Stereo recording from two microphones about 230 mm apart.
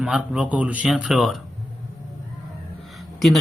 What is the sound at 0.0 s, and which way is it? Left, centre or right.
A man's voice, centre.